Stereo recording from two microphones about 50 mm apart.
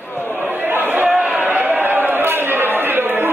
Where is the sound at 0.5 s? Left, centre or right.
Right.